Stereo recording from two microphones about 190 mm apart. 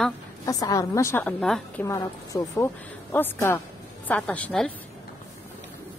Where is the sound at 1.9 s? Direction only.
15° left (ahead or behind).